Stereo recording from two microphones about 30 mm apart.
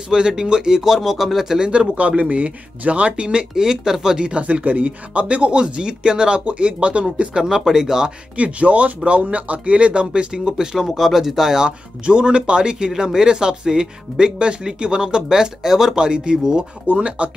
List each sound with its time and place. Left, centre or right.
0.3 s speech: right
0.8 s speech: centre
1.7 s speech: right
3.5 s speech: centre
4.3 s speech: right
6.4 s speech: right
7.5 s speech: centre
8.4 s speech: right
10.9 s speech: centre
12.0 s speech: right; by 16.0 s centre
16.0 s speech: right
16.8 s speech: right